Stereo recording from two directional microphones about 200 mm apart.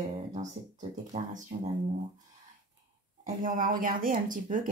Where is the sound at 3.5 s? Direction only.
45° right (ahead or behind).